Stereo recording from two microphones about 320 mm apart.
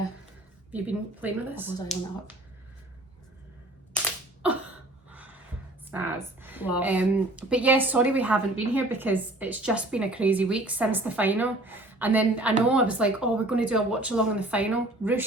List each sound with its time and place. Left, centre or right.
0.7 s speech: centre
5.1 s a sound: centre
5.9 s speech: centre